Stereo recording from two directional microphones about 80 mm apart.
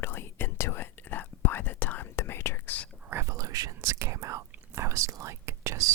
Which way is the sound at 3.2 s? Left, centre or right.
Right.